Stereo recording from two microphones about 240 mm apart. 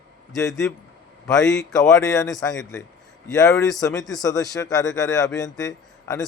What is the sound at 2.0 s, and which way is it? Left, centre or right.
A man's voice, centre.